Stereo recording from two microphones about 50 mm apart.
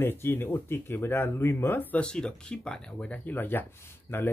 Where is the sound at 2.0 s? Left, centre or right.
Centre.